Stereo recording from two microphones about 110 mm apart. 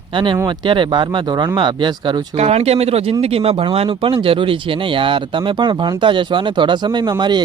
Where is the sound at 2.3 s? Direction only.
70° right (ahead or behind).